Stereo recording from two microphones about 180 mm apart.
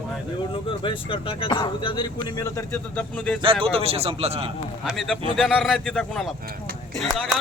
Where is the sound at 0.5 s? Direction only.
30° left (ahead or behind); by 3.4 s 5° left (ahead or behind).